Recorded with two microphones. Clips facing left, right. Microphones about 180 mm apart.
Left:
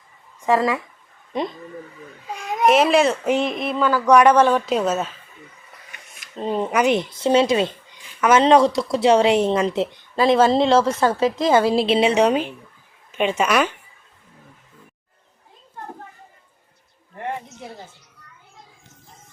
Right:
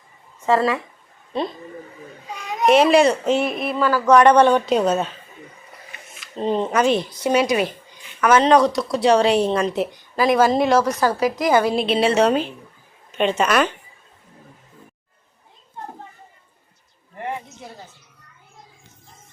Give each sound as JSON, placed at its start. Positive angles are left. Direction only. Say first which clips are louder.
{"t": 0.4, "sound": "speech", "louder": "even", "side_deg": 15}
{"t": 2.6, "sound": "a woman's voice", "louder": "right 2 dB", "side_deg": 0}
{"t": 4.1, "sound": "a woman's voice", "louder": "right 1 dB", "side_deg": 5}
{"t": 6.3, "sound": "a woman's voice", "louder": "right 1 dB", "side_deg": 5}